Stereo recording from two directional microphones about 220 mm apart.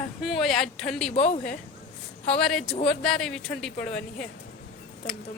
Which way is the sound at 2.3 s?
5° left (ahead or behind).